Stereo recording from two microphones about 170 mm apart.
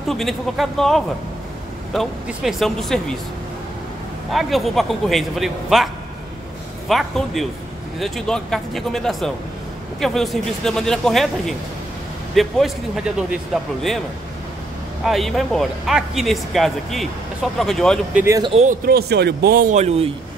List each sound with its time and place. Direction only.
0.1 s speech: centre (ahead or behind)
4.3 s speech: centre (ahead or behind)
6.9 s speech: centre (ahead or behind)
15.0 s speech: centre (ahead or behind)
18.2 s speech: 20° right (ahead or behind)
18.5 s speech: 40° right (ahead or behind)
18.9 s speech: 70° right (ahead or behind)
19.8 s speech: 40° right (ahead or behind)